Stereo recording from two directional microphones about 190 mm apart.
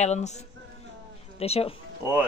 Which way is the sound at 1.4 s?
30° left (ahead or behind).